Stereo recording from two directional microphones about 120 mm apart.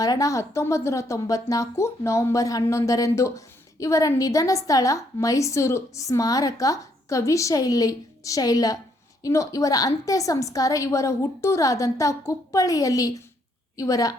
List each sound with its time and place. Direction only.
0.0 s speech: 30° left (ahead or behind)